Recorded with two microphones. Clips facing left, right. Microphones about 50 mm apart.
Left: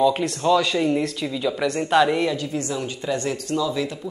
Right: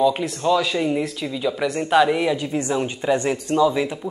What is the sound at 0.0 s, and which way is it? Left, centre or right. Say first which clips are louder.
Speech: even; centre.